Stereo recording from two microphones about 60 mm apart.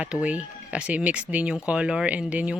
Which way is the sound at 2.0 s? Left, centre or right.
Right.